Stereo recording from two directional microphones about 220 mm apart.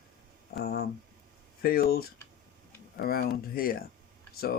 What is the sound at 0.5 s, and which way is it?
Speech, 45° left (ahead or behind).